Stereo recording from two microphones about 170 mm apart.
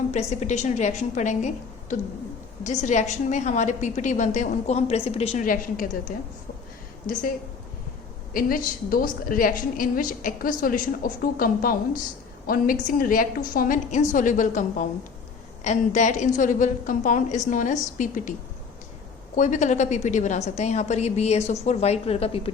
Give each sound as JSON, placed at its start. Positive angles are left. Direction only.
{"t": 0.1, "sound": "a woman's voice", "side_deg": 40}
{"t": 8.3, "sound": "a woman's voice", "side_deg": 55}
{"t": 19.4, "sound": "a woman's voice", "side_deg": 45}